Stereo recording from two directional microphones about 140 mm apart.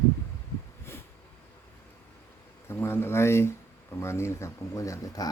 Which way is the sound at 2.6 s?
15° left (ahead or behind).